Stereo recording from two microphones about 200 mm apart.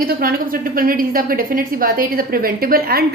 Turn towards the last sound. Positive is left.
turn(degrees=-50)  # may be behind; listen again after turning